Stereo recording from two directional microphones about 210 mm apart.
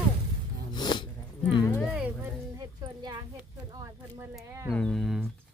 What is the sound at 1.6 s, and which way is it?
Speech, 10° left (ahead or behind).